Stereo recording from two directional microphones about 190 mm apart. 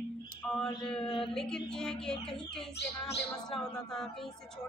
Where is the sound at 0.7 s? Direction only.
25° left (ahead or behind).